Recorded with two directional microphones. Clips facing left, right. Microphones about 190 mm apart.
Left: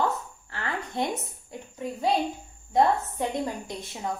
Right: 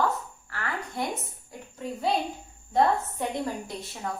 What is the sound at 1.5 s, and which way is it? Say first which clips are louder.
A woman's voice: left 1 dB; 15° left (ahead or behind).